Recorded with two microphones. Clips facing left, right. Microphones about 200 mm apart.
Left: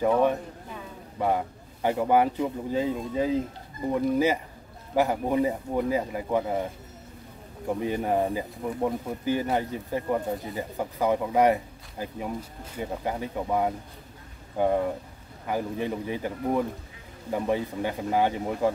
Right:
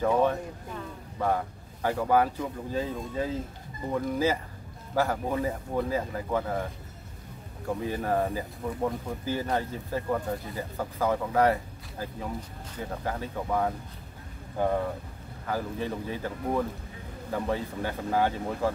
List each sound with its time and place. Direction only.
0.0 s speech: 15° left (ahead or behind)